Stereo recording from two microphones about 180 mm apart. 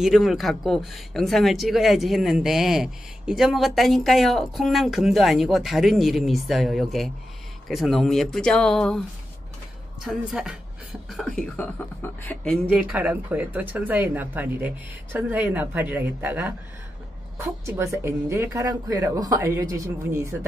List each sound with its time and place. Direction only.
0.0 s speech: centre (ahead or behind)
10.0 s speech: 5° right (ahead or behind)
12.4 s speech: 5° right (ahead or behind)
17.6 s speech: 15° right (ahead or behind)